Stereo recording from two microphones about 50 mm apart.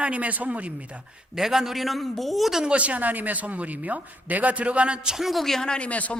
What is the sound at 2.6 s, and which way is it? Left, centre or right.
Speech, right.